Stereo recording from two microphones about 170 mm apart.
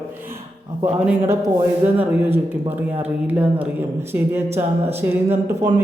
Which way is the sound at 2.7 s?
10° right (ahead or behind).